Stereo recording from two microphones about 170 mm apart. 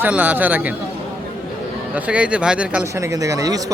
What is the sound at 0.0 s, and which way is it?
Speech, 10° right (ahead or behind).